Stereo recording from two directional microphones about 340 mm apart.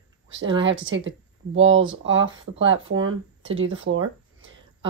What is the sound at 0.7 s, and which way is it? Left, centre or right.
Speech, right.